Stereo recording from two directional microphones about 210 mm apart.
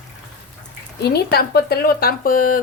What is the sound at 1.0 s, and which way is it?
Speech, 50° left (ahead or behind).